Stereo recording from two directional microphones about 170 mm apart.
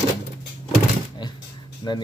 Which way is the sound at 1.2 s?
25° left (ahead or behind).